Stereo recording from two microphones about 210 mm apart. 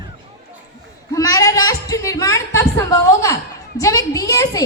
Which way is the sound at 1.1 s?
15° left (ahead or behind).